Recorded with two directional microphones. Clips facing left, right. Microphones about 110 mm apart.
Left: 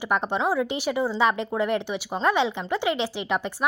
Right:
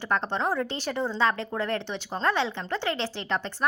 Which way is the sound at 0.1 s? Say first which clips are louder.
Left 3 dB; 10° left (ahead or behind).